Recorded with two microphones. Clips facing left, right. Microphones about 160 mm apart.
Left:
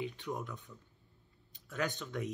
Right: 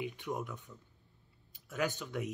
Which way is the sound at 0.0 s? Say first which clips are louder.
Right 1 dB; 15° right (ahead or behind).